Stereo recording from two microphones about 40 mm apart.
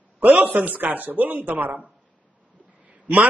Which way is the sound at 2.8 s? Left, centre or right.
Right.